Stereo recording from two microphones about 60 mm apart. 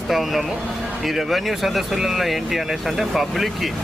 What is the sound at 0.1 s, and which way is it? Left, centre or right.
Speech, centre.